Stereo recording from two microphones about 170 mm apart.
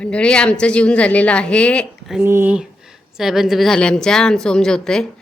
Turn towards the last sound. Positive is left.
turn(degrees=5)  # may be behind; listen again after turning